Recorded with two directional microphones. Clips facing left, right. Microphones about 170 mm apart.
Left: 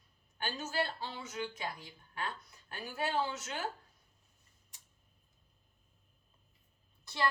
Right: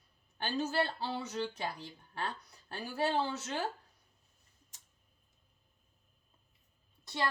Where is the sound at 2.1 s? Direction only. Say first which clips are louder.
Right 1 dB; 35° right (ahead or behind).